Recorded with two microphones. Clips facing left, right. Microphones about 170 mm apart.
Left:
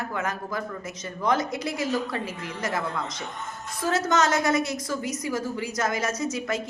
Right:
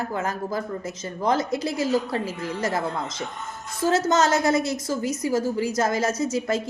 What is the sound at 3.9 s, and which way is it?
A woman's voice, 25° right (ahead or behind).